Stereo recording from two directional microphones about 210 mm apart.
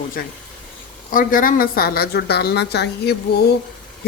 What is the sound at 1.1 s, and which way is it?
A woman's voice, 40° left (ahead or behind).